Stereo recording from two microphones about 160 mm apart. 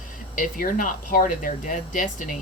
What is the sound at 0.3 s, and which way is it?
Speech, 60° left (ahead or behind).